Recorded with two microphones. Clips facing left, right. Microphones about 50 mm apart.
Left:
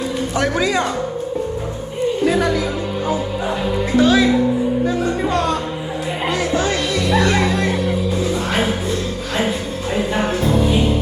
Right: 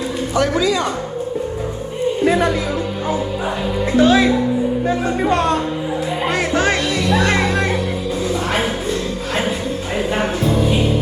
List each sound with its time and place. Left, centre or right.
0.3 s a man's voice: left
2.2 s speech: right
3.6 s speech: centre
3.8 s speech: right